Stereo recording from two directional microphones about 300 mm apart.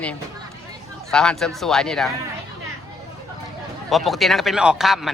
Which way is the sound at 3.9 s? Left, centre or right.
Centre.